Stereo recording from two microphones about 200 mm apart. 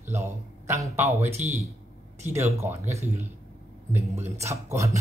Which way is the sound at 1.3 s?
35° right (ahead or behind).